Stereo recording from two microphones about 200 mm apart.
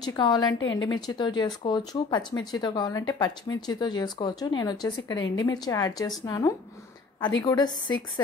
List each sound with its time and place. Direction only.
0.0 s speech: 20° left (ahead or behind)
0.6 s speech: 75° left (ahead or behind)
0.8 s speech: 20° left (ahead or behind)